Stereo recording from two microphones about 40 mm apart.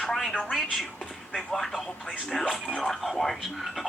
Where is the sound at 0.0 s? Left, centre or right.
Centre.